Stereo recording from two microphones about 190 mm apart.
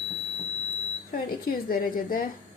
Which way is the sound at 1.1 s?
50° left (ahead or behind).